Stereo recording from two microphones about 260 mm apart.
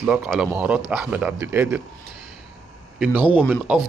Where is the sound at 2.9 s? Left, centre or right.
Centre.